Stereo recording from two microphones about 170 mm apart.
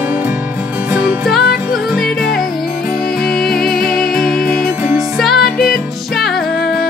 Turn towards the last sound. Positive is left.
turn(degrees=0)  # may be behind; listen again after turning